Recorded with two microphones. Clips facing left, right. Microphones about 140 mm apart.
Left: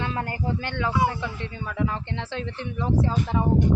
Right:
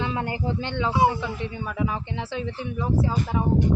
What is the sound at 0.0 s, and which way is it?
A woman's voice, 15° right (ahead or behind).